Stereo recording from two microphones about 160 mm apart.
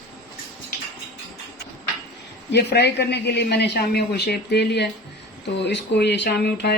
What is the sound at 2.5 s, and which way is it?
Speech, 90° left.